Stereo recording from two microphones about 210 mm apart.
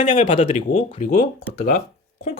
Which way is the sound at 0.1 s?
25° left (ahead or behind).